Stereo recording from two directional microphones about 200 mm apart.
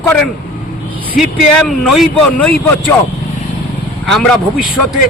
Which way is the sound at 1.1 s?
Centre (ahead or behind).